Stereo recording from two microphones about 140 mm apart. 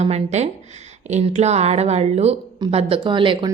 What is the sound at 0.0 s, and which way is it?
A woman's voice, 50° right (ahead or behind).